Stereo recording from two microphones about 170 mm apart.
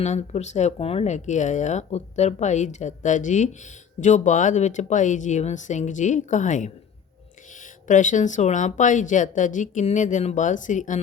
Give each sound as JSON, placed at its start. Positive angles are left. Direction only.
{"t": 0.0, "sound": "speech", "side_deg": 40}
{"t": 7.9, "sound": "speech", "side_deg": 50}